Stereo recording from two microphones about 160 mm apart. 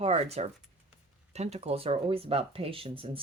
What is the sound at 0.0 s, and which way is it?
Speech, 40° right (ahead or behind).